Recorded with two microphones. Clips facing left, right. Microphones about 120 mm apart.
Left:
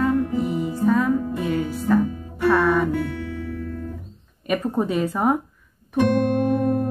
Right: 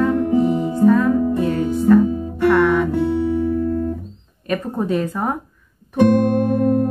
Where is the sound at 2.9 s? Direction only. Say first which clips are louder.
Right 9 dB; 25° right (ahead or behind).